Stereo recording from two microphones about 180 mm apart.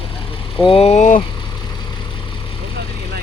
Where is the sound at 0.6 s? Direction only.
35° left (ahead or behind).